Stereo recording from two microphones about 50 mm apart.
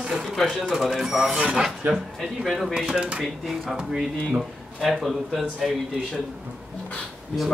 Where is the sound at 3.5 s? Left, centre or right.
Centre.